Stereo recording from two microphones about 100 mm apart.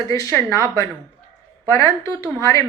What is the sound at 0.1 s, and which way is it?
A woman's voice, 30° left (ahead or behind).